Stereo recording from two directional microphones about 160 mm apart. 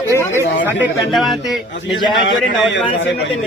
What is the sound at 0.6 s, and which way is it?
Speech, 10° right (ahead or behind).